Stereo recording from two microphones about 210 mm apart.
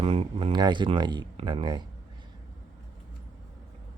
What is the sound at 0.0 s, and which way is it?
Speech, 30° right (ahead or behind).